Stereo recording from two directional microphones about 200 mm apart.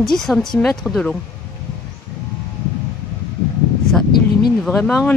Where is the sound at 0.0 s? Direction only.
Centre (ahead or behind).